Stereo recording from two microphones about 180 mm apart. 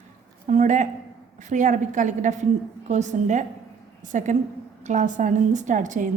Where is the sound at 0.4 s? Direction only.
45° right (ahead or behind).